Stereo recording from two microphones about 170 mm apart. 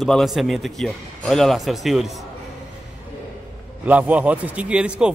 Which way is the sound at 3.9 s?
10° right (ahead or behind).